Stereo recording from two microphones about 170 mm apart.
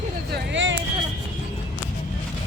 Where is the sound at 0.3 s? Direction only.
80° right.